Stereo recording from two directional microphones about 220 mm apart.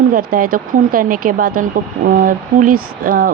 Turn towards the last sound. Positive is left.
turn(degrees=-40)  # may be behind; listen again after turning